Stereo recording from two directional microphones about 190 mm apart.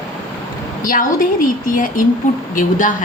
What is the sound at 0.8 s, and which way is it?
A woman's voice, 45° left (ahead or behind).